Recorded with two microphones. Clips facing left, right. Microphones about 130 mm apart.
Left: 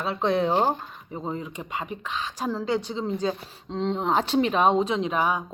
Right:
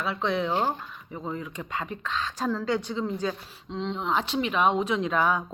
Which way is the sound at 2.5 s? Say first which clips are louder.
Left 2 dB; 30° left (ahead or behind).